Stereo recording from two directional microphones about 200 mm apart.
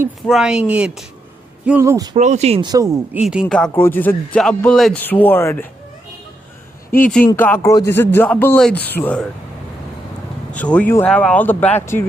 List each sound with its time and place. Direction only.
0.3 s speech: centre (ahead or behind)
2.1 s speech: 35° right (ahead or behind); by 3.0 s 15° right (ahead or behind)
3.2 s a man's voice: 5° right (ahead or behind)
7.0 s a man's voice: 5° left (ahead or behind)
10.6 s a man's voice: 5° left (ahead or behind)